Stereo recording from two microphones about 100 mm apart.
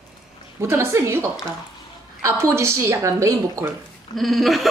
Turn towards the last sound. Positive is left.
turn(degrees=0)  # may be behind; listen again after turning